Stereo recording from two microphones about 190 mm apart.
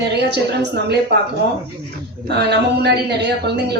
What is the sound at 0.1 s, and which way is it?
Speech, 60° right (ahead or behind).